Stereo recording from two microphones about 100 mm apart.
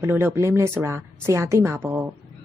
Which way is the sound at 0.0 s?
25° right (ahead or behind).